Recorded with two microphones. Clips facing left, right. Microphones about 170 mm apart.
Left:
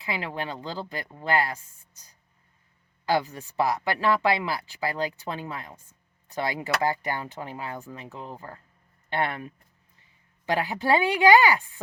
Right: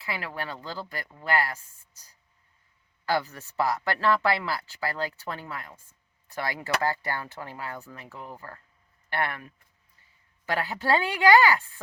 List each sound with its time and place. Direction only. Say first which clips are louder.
0.0 s speech: left 3 dB; 20° left (ahead or behind)
3.1 s speech: left 2 dB; 15° left (ahead or behind)